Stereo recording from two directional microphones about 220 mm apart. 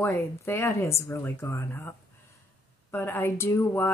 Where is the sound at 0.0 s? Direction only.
10° left (ahead or behind).